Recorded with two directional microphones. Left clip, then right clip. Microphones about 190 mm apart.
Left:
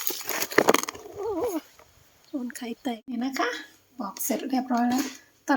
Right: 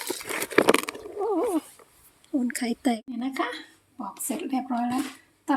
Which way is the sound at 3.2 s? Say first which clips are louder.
Left 5 dB; 15° left (ahead or behind).